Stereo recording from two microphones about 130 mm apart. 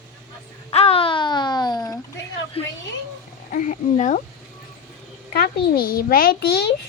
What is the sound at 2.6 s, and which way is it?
Speech, 50° left (ahead or behind).